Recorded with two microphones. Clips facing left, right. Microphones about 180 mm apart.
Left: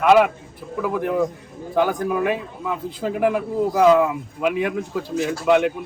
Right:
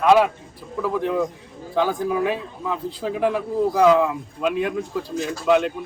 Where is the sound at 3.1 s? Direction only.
10° left (ahead or behind).